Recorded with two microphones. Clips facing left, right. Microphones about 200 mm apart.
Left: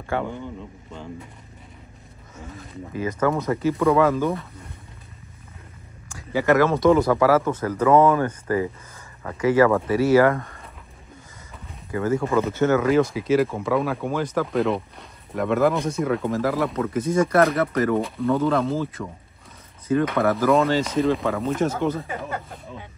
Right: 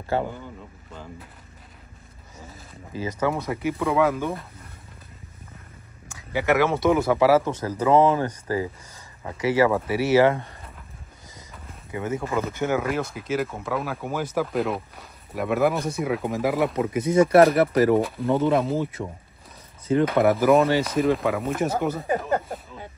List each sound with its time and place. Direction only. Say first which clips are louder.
0.2 s speech: left 1 dB; 5° right (ahead or behind)
2.3 s speech: left 7 dB; 5° right (ahead or behind)
3.7 s speech: left 3 dB; centre (ahead or behind)
6.3 s speech: left 3 dB; 15° right (ahead or behind); by 10.6 s 30° right (ahead or behind)
11.9 s speech: left 5 dB; 20° right (ahead or behind)
12.2 s speech: left 5 dB; centre (ahead or behind)
12.5 s speech: left 5 dB; 10° right (ahead or behind)
12.8 s speech: left 8 dB; centre (ahead or behind); by 17.2 s 20° right (ahead or behind)
17.3 s speech: right 3 dB; 30° right (ahead or behind)
20.8 s speech: even; 5° right (ahead or behind)
22.0 s a sound: right 7 dB; 40° right (ahead or behind)